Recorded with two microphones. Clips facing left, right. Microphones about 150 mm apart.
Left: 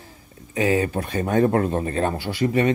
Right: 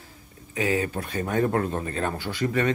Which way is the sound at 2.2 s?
10° left (ahead or behind).